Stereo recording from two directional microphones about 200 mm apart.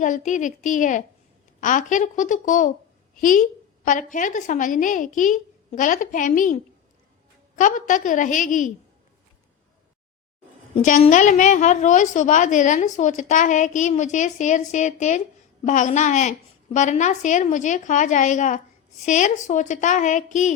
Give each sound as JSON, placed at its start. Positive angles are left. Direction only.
{"t": 0.0, "sound": "a woman's voice", "side_deg": 40}
{"t": 10.8, "sound": "a woman's voice", "side_deg": 35}